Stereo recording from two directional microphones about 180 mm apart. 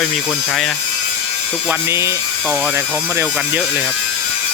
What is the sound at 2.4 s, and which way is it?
Speech, 5° right (ahead or behind).